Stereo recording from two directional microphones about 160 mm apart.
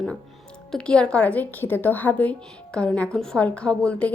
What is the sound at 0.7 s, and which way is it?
A woman's voice, 5° left (ahead or behind).